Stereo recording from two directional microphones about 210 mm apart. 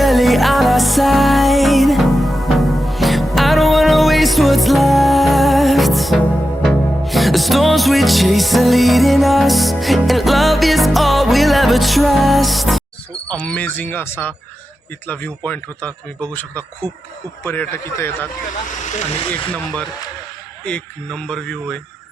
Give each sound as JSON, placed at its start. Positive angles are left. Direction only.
{"t": 0.0, "sound": "music", "side_deg": 0}
{"t": 13.2, "sound": "speech", "side_deg": 5}
{"t": 18.9, "sound": "speech", "side_deg": 35}
{"t": 20.7, "sound": "speech", "side_deg": 5}